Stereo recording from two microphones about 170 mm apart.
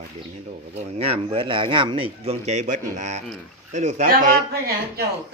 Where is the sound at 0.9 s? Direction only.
35° right (ahead or behind); by 5.0 s 60° right (ahead or behind).